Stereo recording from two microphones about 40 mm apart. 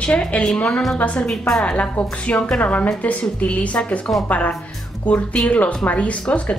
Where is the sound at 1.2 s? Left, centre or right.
Centre.